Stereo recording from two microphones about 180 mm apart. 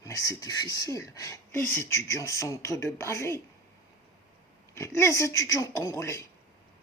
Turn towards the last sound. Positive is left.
turn(degrees=15)  # may be behind; listen again after turning